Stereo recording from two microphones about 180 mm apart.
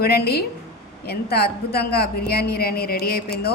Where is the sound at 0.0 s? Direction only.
60° left (ahead or behind).